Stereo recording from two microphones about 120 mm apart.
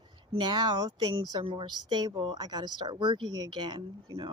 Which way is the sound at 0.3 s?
35° right (ahead or behind).